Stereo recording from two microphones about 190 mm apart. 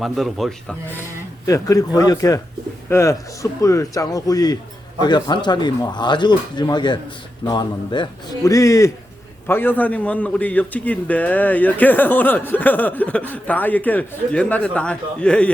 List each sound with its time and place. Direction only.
0.0 s speech: centre (ahead or behind)
1.5 s a man's voice: 15° left (ahead or behind)